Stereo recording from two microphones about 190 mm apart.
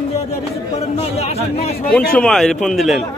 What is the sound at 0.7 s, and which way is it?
Speech, 35° left (ahead or behind).